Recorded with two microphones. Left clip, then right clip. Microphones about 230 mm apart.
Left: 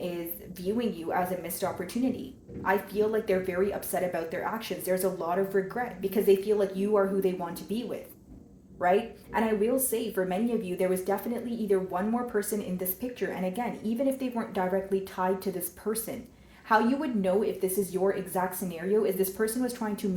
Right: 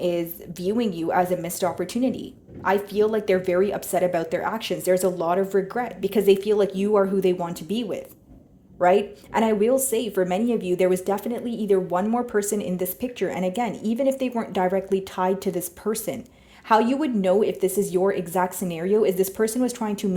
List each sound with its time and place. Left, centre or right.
0.6 s speech: right